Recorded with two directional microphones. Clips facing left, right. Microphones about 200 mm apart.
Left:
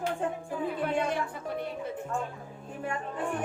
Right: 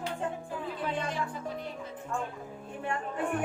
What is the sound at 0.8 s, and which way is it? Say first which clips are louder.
Music: left 2 dB; 55° left (ahead or behind).